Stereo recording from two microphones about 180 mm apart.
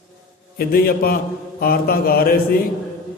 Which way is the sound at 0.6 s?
55° left (ahead or behind).